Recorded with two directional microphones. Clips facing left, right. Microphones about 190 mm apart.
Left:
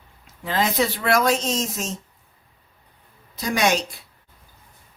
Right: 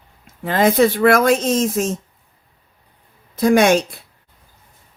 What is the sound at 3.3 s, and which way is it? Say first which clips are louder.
Speech: right 9 dB; 55° right (ahead or behind).